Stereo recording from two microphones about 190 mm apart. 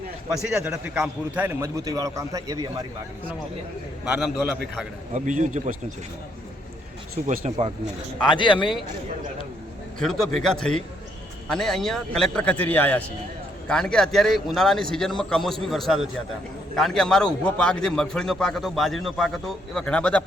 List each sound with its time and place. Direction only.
0.4 s a man's voice: 5° right (ahead or behind)
4.0 s a man's voice: 5° right (ahead or behind)
5.1 s speech: 40° right (ahead or behind)
7.3 s speech: 40° right (ahead or behind)
10.0 s a man's voice: centre (ahead or behind)